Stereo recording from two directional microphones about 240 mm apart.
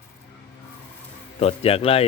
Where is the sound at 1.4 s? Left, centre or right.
Left.